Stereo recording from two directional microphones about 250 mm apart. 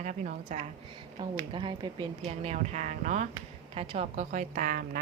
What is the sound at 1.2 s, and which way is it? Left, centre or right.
A woman's voice, centre.